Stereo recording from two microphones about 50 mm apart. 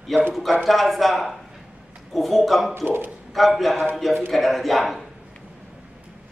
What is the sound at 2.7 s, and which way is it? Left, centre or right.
Speech, right.